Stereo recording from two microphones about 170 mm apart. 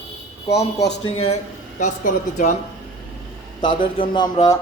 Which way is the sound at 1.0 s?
35° left (ahead or behind).